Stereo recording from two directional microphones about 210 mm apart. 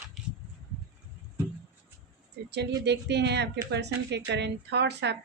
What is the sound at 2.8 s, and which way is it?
Speech, 55° right (ahead or behind).